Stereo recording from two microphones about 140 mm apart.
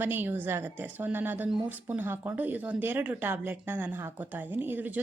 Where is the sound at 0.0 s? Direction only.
15° right (ahead or behind).